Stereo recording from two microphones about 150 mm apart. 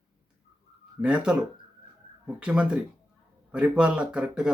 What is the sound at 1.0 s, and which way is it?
Speech, 5° right (ahead or behind).